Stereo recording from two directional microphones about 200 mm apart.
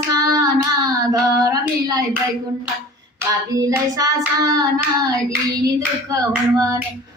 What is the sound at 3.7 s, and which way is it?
Child singing, 15° right (ahead or behind).